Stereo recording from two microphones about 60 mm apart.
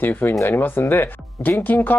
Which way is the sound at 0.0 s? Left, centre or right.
Left.